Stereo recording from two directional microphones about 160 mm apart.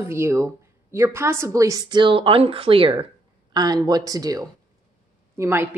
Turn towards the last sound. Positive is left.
turn(degrees=-15)  # may be behind; listen again after turning